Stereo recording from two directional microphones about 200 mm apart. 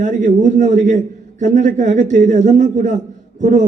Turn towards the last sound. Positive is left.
turn(degrees=-40)  # may be behind; listen again after turning